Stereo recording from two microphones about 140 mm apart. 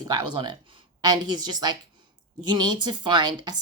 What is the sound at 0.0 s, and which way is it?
Speech, 30° right (ahead or behind).